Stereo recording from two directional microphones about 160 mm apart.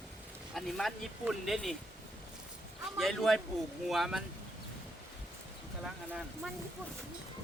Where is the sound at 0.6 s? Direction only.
Centre (ahead or behind).